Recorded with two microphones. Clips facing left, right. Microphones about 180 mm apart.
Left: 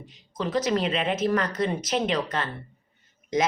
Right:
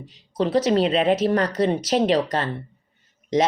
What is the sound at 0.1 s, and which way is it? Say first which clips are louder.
Speech: right 6 dB; 35° right (ahead or behind).